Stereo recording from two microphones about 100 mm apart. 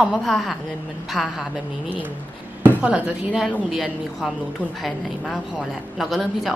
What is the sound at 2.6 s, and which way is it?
A woman's voice, 10° right (ahead or behind).